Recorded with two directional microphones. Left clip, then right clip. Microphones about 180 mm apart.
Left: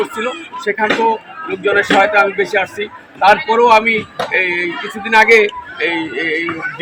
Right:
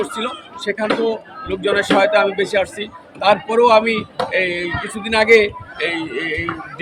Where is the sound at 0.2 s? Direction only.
45° right (ahead or behind).